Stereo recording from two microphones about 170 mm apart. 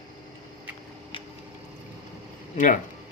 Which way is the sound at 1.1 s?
30° left (ahead or behind).